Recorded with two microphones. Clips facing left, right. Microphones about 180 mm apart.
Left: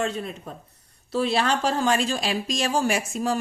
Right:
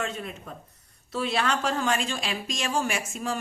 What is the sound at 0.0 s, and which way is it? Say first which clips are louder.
Speech: left 5 dB; 35° left (ahead or behind).